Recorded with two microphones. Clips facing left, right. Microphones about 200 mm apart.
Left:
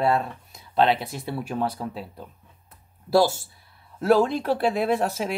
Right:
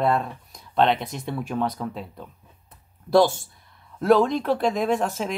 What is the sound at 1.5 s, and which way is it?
Speech, 30° left (ahead or behind).